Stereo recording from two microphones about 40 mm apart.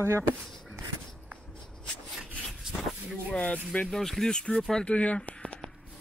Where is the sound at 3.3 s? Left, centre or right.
Left.